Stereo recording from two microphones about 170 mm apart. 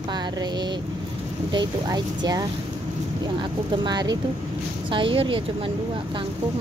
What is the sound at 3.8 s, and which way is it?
Speech, 25° right (ahead or behind).